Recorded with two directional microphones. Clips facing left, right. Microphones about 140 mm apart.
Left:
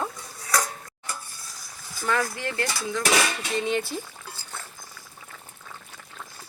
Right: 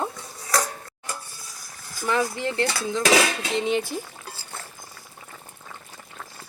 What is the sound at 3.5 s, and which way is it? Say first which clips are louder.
Speech: right 2 dB; 15° right (ahead or behind).